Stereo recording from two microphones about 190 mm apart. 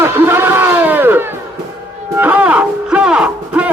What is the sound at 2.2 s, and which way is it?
Music, 10° right (ahead or behind).